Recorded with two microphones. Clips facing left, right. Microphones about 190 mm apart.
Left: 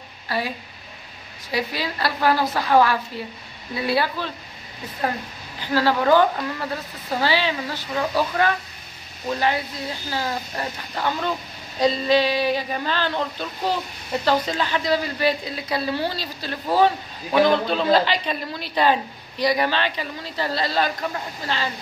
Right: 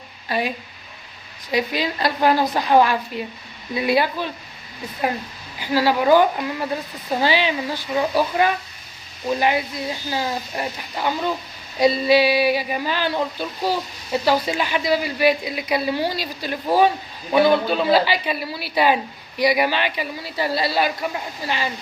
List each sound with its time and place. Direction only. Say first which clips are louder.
0.3 s a woman's voice: right 3 dB; 20° right (ahead or behind)
1.5 s a woman's voice: right 4 dB; 20° right (ahead or behind)
5.6 s speech: right 2 dB; 10° right (ahead or behind)